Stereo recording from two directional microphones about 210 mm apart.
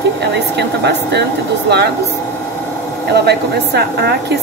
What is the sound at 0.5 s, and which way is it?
Speech, 55° right (ahead or behind).